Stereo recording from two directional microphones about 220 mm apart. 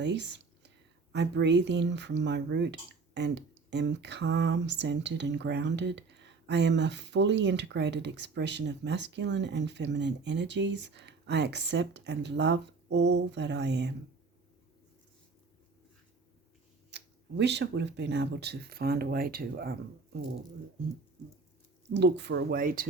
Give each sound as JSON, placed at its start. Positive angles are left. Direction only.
{"t": 0.0, "sound": "speech", "side_deg": -50}
{"t": 16.9, "sound": "speech", "side_deg": -50}
{"t": 21.8, "sound": "speech", "side_deg": -50}